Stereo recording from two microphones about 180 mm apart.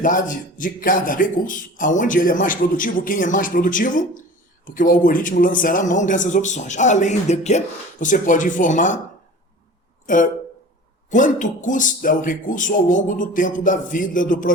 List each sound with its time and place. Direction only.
0.0 s a man's voice: 50° left (ahead or behind)
10.1 s a man's voice: 45° left (ahead or behind)